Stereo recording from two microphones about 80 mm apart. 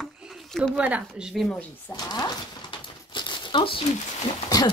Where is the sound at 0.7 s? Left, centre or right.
Centre.